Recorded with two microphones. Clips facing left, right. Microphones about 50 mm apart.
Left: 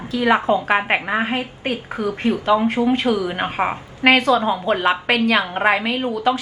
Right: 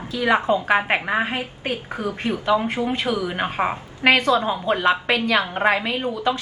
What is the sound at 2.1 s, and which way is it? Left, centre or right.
Speech, left.